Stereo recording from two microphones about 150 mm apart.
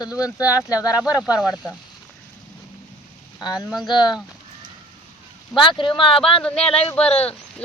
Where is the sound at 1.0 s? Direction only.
10° right (ahead or behind).